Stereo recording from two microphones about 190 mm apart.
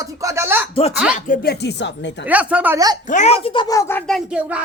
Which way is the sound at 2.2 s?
10° right (ahead or behind).